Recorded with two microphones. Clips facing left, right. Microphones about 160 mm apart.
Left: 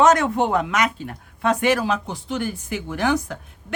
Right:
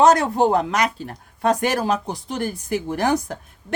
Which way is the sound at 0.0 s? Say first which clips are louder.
Right 1 dB; 35° right (ahead or behind).